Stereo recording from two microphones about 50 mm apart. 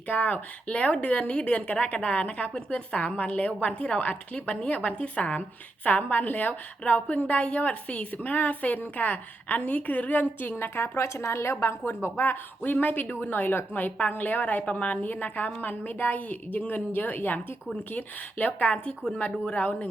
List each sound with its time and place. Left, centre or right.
0.1 s a woman's voice: left
10.6 s speech: left
12.1 s a woman's voice: left